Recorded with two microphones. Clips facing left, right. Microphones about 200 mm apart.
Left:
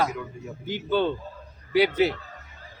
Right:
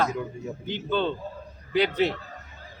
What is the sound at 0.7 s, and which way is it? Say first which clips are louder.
A man's voice: left 3 dB; 10° left (ahead or behind).